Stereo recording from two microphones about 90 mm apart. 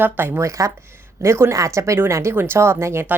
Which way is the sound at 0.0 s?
25° right (ahead or behind).